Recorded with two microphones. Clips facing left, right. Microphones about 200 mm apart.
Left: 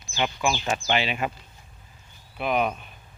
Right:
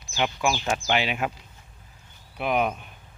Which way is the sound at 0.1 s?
10° right (ahead or behind).